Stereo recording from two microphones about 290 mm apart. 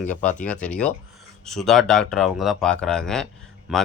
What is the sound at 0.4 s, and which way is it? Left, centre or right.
Speech, centre.